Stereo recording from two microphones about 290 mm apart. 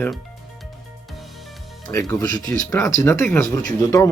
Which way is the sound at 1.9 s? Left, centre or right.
Centre.